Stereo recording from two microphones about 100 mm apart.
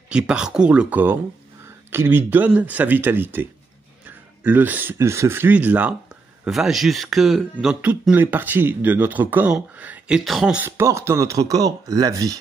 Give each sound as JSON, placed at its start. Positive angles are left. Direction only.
{"t": 0.1, "sound": "speech", "side_deg": -10}
{"t": 4.0, "sound": "a sound", "side_deg": -15}
{"t": 4.9, "sound": "speech", "side_deg": -30}
{"t": 6.4, "sound": "speech", "side_deg": -5}
{"t": 8.1, "sound": "speech", "side_deg": -20}
{"t": 10.8, "sound": "speech", "side_deg": -25}